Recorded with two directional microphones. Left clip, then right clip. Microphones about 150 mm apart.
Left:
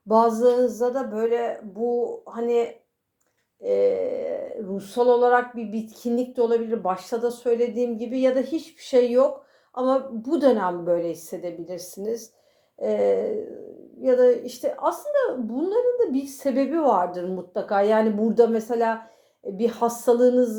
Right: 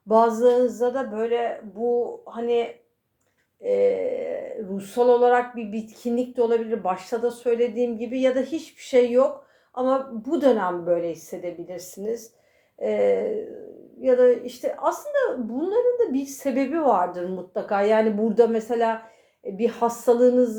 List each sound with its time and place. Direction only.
0.1 s speech: 30° left (ahead or behind)
3.6 s a woman's voice: 30° left (ahead or behind)